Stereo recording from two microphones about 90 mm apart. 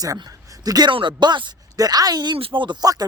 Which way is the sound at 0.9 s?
65° right (ahead or behind).